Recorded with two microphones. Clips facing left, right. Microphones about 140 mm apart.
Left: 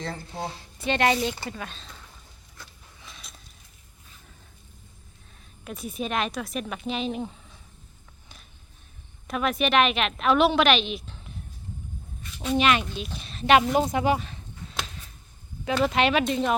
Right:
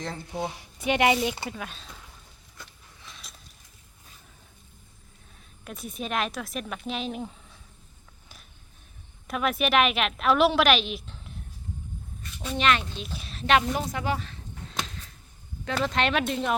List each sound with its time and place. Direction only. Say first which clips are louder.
0.3 s a woman's voice: right 2 dB; 15° right (ahead or behind)
2.6 s a sound: even; centre (ahead or behind)
5.6 s a woman's voice: left 3 dB; centre (ahead or behind)
9.2 s a woman's voice: left 1 dB; centre (ahead or behind)
12.5 s speech: left 3 dB; 10° left (ahead or behind)
13.1 s a woman's voice: even; 5° right (ahead or behind)
13.6 s speech: left 6 dB; 20° left (ahead or behind)
15.6 s a woman's voice: left 4 dB; 10° left (ahead or behind)